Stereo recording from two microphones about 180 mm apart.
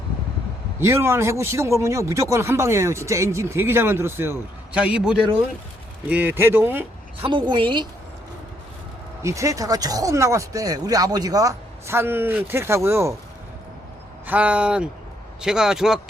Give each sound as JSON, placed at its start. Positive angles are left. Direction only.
{"t": 0.8, "sound": "speech", "side_deg": -15}
{"t": 7.2, "sound": "a woman's voice", "side_deg": -25}
{"t": 9.2, "sound": "speech", "side_deg": -15}
{"t": 14.3, "sound": "a man's voice", "side_deg": -5}